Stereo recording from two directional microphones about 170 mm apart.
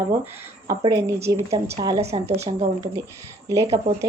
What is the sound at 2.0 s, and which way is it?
Speech, 40° right (ahead or behind).